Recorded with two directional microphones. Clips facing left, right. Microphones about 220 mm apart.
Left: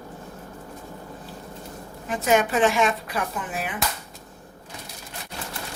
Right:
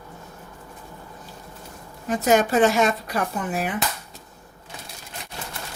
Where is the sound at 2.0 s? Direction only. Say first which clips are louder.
Right 2 dB; 40° right (ahead or behind).